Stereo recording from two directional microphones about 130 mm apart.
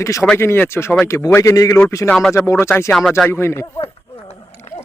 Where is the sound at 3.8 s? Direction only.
45° left (ahead or behind).